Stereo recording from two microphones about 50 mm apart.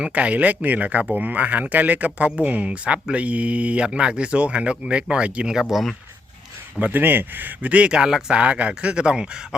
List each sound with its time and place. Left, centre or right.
0.1 s speech: right
5.5 s speech: centre
6.7 s a man's voice: right
7.0 s a man's voice: right
7.9 s speech: centre